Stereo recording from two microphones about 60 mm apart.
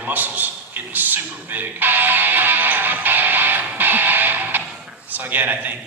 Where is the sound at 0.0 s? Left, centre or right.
Right.